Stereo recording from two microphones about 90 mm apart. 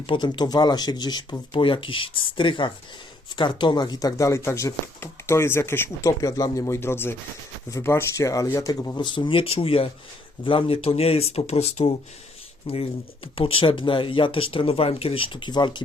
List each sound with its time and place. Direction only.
0.0 s speech: 65° left (ahead or behind); by 6.1 s 25° left (ahead or behind)
6.1 s speech: 40° left (ahead or behind)
9.0 s speech: 60° left (ahead or behind); by 9.9 s 90° left
10.4 s speech: 70° left (ahead or behind)